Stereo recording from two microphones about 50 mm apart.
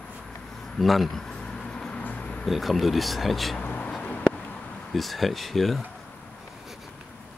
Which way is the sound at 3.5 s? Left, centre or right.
Left.